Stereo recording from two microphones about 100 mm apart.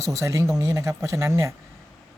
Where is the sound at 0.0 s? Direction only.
30° right (ahead or behind).